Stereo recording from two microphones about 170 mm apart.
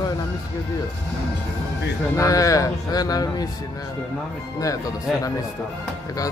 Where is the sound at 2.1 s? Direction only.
20° left (ahead or behind).